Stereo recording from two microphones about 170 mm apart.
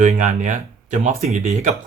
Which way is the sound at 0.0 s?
45° right (ahead or behind).